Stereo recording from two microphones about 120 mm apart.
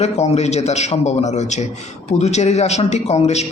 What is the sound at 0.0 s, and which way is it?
A man's voice, 65° left (ahead or behind).